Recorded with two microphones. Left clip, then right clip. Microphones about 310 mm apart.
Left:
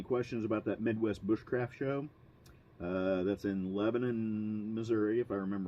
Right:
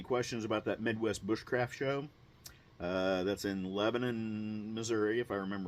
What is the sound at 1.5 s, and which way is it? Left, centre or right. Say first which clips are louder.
Speech: right 2 dB; right.